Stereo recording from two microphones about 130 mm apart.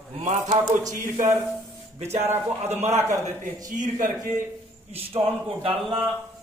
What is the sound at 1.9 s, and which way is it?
Speech, 60° right (ahead or behind).